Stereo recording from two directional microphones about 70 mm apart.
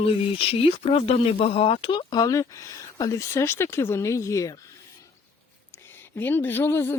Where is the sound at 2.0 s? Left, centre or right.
Left.